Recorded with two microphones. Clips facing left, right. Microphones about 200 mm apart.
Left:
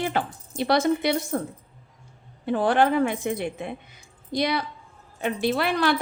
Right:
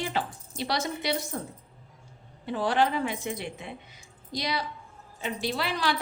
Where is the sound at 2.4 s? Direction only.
55° left (ahead or behind).